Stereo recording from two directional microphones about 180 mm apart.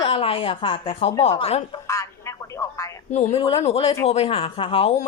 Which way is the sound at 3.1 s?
40° left (ahead or behind).